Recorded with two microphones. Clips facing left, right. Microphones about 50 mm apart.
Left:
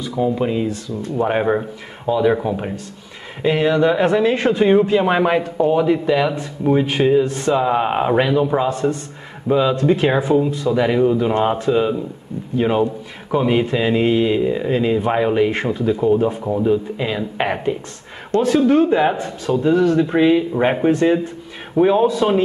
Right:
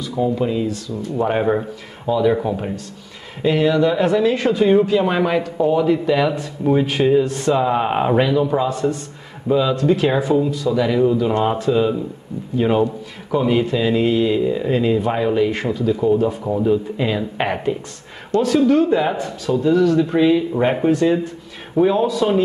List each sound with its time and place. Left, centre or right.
0.2 s speech: left
1.2 s speech: centre
8.2 s speech: centre
13.3 s speech: centre
14.7 s speech: centre
16.4 s speech: centre
18.4 s a man's voice: left